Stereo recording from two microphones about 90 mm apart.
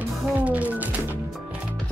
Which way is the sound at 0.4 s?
15° right (ahead or behind).